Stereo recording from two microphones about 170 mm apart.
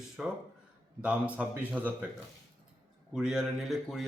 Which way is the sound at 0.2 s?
5° right (ahead or behind).